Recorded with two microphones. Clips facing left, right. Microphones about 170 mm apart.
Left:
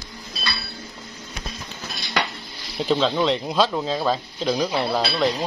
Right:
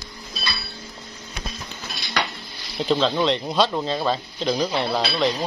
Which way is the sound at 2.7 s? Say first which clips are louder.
Even; centre (ahead or behind).